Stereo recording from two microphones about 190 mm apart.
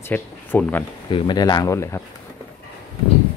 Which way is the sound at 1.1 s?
25° left (ahead or behind).